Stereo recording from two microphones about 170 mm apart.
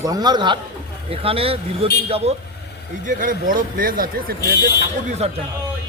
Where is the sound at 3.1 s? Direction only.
55° right (ahead or behind).